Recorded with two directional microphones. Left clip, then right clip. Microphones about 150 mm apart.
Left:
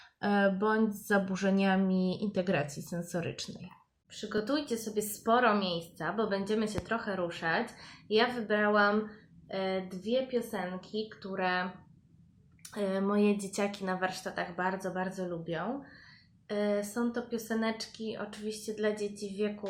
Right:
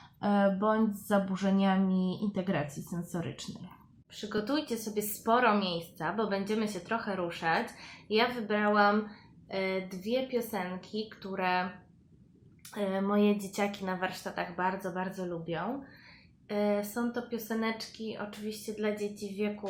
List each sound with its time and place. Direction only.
0.2 s speech: 5° left (ahead or behind)
2.9 s speech: 15° left (ahead or behind)
4.1 s a woman's voice: centre (ahead or behind)
12.7 s speech: 5° left (ahead or behind)